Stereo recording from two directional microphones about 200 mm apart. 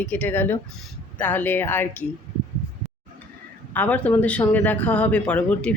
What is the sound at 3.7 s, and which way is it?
Speech, 10° left (ahead or behind).